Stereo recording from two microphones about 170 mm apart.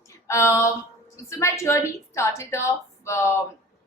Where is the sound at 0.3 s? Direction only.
15° left (ahead or behind).